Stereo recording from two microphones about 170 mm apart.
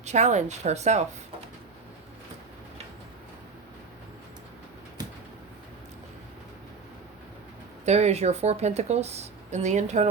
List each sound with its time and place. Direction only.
0.0 s a woman's voice: 40° right (ahead or behind)
7.9 s a woman's voice: 40° right (ahead or behind)